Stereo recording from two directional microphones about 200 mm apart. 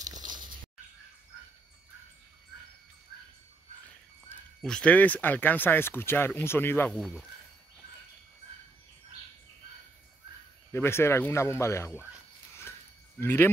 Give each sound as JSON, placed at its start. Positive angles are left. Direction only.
{"t": 0.0, "sound": "a sound", "side_deg": -20}
{"t": 4.6, "sound": "speech", "side_deg": 5}
{"t": 7.0, "sound": "speech", "side_deg": 0}
{"t": 10.7, "sound": "speech", "side_deg": 10}
{"t": 13.2, "sound": "speech", "side_deg": 10}